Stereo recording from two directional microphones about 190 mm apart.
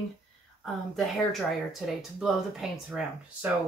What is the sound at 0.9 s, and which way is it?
Speech, centre (ahead or behind).